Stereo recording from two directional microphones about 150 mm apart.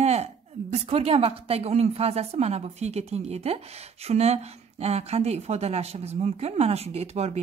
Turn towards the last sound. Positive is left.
turn(degrees=-45)  # may be behind; listen again after turning